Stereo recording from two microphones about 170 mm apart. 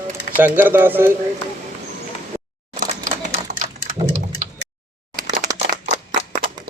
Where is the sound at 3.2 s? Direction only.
45° right (ahead or behind).